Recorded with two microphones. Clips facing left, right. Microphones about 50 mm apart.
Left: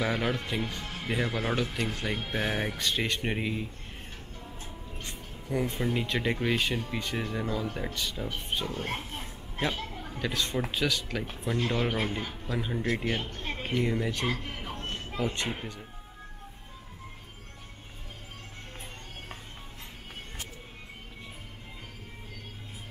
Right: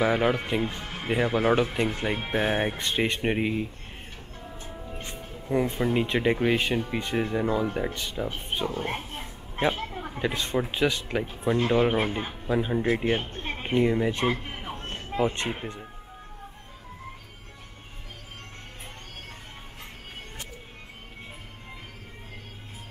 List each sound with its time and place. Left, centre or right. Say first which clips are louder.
0.0 s speech: right 6 dB; right
2.8 s speech: right 4 dB; right
4.9 s speech: right 4 dB; right
14.9 s music: right 6 dB; right
15.6 s speech: right 4 dB; right